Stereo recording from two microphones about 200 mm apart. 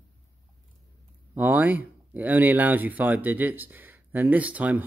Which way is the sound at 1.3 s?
10° right (ahead or behind).